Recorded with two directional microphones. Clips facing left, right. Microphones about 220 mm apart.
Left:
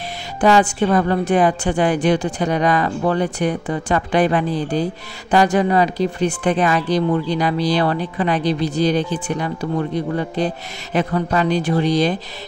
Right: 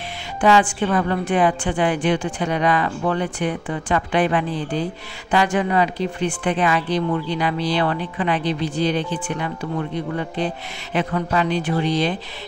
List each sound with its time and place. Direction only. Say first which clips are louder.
0.4 s speech: left 2 dB; 40° left (ahead or behind)